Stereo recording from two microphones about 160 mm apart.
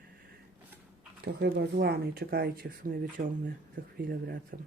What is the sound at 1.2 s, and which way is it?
Speech, 90° right.